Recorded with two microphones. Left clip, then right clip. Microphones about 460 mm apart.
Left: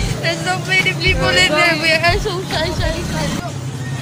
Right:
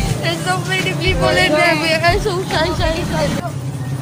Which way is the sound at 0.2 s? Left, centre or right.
Left.